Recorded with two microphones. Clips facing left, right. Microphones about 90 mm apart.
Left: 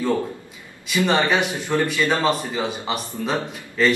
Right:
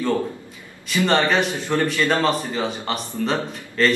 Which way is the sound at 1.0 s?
5° left (ahead or behind).